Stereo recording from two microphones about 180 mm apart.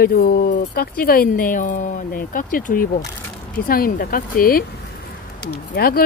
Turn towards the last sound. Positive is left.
turn(degrees=55)  # may be behind; listen again after turning